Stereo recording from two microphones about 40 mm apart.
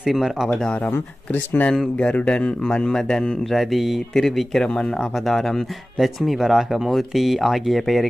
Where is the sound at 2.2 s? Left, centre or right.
Left.